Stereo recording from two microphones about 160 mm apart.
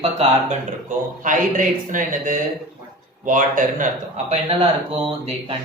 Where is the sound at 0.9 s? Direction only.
55° right (ahead or behind).